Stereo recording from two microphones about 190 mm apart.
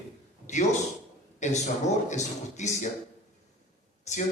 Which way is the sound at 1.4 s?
40° left (ahead or behind).